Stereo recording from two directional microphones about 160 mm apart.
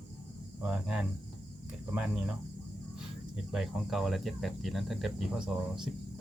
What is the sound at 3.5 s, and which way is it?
Cricket, centre (ahead or behind).